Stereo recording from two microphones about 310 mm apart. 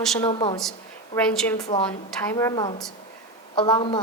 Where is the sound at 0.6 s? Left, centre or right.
Centre.